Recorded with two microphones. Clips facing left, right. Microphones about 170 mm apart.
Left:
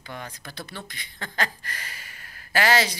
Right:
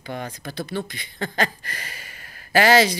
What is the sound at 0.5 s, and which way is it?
Speech, 45° right (ahead or behind).